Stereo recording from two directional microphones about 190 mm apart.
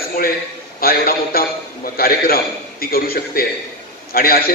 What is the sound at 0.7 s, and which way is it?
A man's voice, 50° left (ahead or behind).